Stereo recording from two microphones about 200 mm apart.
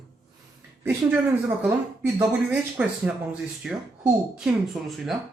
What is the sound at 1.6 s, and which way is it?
Speech, 10° right (ahead or behind).